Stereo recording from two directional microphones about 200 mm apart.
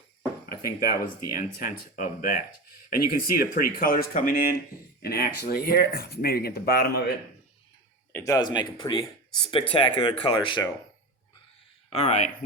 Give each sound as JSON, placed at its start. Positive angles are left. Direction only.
{"t": 0.4, "sound": "a sound", "side_deg": 50}
{"t": 1.3, "sound": "speech", "side_deg": 45}
{"t": 8.1, "sound": "speech", "side_deg": 15}
{"t": 11.9, "sound": "speech", "side_deg": 35}